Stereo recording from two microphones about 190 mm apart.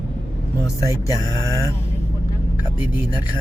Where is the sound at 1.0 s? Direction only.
20° left (ahead or behind).